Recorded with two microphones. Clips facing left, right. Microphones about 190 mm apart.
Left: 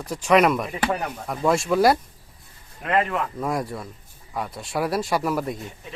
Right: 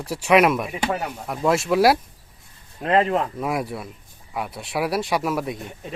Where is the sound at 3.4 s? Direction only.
5° right (ahead or behind).